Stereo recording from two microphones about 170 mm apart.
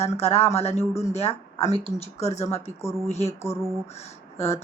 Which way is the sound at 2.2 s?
40° left (ahead or behind).